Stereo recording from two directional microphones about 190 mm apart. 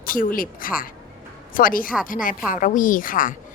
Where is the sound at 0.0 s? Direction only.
45° left (ahead or behind).